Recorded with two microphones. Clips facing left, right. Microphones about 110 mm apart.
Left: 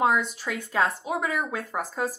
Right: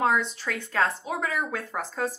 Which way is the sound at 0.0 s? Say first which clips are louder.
Left 1 dB; 5° left (ahead or behind).